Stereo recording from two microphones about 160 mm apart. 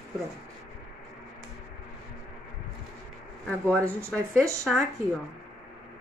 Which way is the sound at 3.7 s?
10° left (ahead or behind).